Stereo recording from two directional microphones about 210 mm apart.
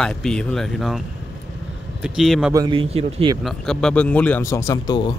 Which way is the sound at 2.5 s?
20° right (ahead or behind).